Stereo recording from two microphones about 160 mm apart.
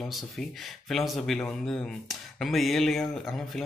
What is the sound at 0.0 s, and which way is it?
Speech, centre (ahead or behind).